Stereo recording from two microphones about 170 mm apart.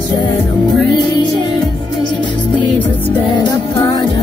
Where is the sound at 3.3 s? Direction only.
25° left (ahead or behind).